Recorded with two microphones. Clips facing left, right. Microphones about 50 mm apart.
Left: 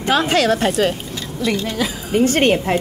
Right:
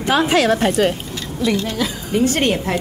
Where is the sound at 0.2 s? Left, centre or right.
Centre.